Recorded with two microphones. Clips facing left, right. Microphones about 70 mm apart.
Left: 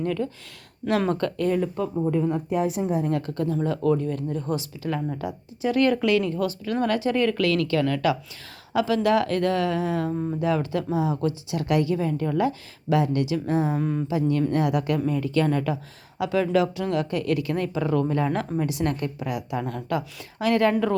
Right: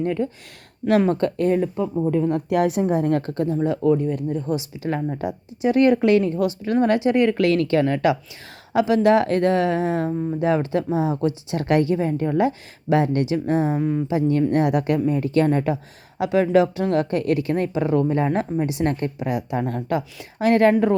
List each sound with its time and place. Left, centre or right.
0.0 s speech: right
1.7 s speech: centre
2.3 s speech: right; by 4.9 s centre
4.9 s speech: right
10.1 s speech: centre
10.4 s speech: right
11.5 s speech: right
13.7 s speech: centre
14.1 s speech: right
19.6 s speech: right